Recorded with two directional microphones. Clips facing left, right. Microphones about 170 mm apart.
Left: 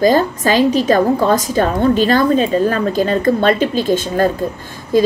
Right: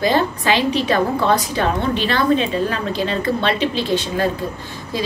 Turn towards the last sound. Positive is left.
turn(degrees=50)  # may be behind; listen again after turning